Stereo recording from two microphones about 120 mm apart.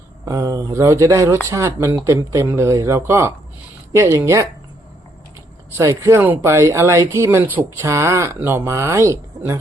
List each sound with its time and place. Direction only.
0.3 s speech: 25° right (ahead or behind)
5.7 s speech: 25° right (ahead or behind)